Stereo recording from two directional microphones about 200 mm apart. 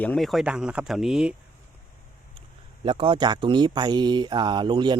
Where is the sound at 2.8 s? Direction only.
25° right (ahead or behind).